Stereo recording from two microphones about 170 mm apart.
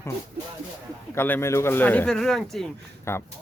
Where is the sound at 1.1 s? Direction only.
15° left (ahead or behind).